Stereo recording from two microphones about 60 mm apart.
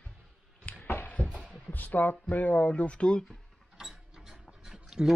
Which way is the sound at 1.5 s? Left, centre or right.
Left.